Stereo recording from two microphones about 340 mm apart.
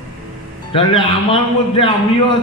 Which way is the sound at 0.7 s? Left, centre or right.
Centre.